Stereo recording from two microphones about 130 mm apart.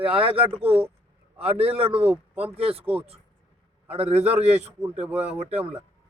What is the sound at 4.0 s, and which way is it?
Speech, 55° right (ahead or behind).